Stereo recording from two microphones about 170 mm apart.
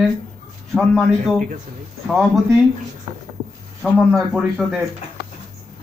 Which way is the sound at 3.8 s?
5° right (ahead or behind).